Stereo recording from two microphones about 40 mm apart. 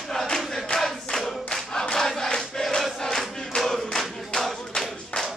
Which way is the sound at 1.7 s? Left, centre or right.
Centre.